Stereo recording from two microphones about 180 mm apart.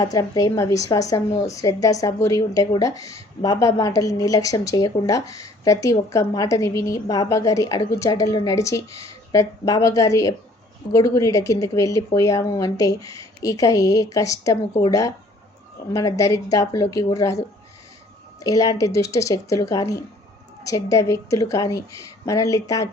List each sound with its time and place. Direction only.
0.0 s a woman's voice: 20° left (ahead or behind)